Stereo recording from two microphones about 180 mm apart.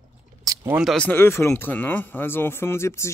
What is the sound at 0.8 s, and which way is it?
Speech, 5° left (ahead or behind).